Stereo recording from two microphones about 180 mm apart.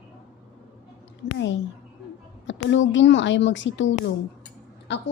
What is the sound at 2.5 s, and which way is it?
Speech, 90° left.